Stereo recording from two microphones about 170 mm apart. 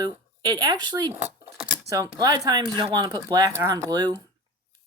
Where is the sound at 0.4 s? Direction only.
25° right (ahead or behind).